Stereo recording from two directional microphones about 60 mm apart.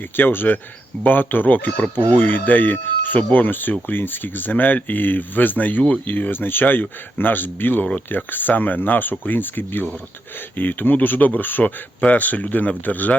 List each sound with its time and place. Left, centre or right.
0.2 s speech: left